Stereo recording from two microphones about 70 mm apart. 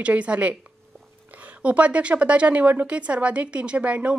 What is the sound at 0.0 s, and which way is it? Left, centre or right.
A woman's voice, centre.